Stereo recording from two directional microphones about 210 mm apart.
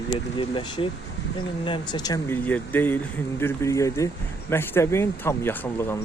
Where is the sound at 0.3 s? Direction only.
25° left (ahead or behind).